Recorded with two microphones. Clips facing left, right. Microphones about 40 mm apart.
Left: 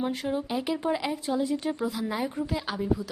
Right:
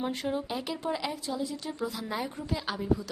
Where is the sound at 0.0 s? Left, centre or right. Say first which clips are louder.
Left 2 dB; centre.